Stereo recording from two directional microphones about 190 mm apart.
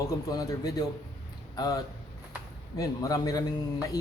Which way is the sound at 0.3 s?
20° left (ahead or behind).